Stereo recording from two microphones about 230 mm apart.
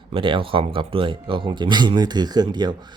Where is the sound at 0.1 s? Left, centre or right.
Right.